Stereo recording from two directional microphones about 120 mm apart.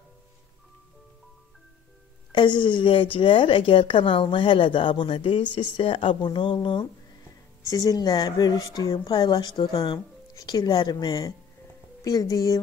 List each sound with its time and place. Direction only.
2.3 s a woman's voice: 40° left (ahead or behind)
7.7 s a woman's voice: 30° left (ahead or behind)